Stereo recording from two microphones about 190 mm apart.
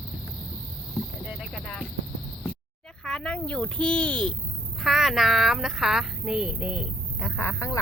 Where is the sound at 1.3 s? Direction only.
Centre (ahead or behind).